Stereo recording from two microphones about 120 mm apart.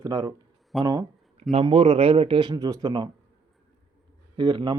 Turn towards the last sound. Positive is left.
turn(degrees=-35)  # may be behind; listen again after turning